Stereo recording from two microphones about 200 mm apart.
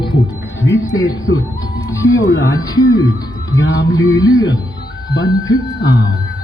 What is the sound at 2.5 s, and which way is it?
Music, 20° left (ahead or behind).